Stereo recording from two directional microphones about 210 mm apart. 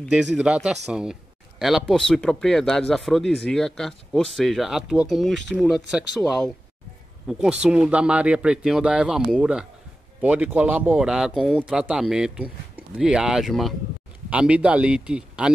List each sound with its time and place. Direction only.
0.0 s speech: 5° right (ahead or behind)